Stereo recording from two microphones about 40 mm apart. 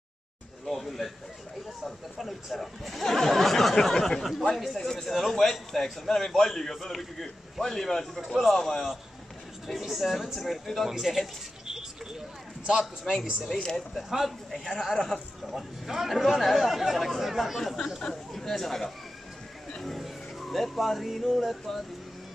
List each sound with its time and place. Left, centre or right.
0.7 s a sound: centre
1.9 s speech: centre
4.7 s a man's voice: centre
5.0 s a man's voice: centre
9.8 s speech: centre
10.9 s a man's voice: centre
13.0 s speech: centre
13.6 s a man's voice: centre
15.5 s speech: centre
17.6 s a man's voice: centre